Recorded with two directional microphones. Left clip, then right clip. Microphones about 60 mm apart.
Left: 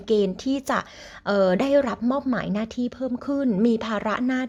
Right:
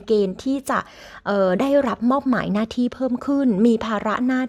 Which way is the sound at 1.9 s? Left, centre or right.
Right.